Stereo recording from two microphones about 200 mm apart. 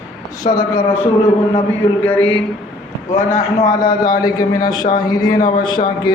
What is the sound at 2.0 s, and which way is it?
Speech, 5° left (ahead or behind).